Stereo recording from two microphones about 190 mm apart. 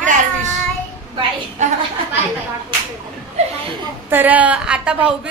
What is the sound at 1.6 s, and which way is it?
Speech, 40° right (ahead or behind).